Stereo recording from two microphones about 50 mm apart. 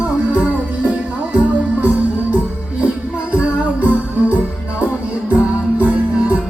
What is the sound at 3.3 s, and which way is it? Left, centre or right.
Music, right.